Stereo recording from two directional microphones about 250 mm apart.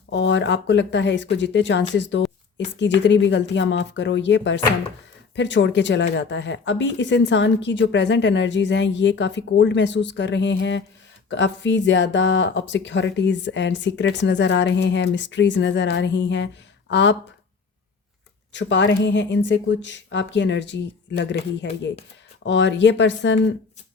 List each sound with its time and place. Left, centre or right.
0.1 s speech: left
18.5 s speech: left